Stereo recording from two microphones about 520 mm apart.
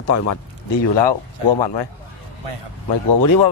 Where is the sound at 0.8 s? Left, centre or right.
Left.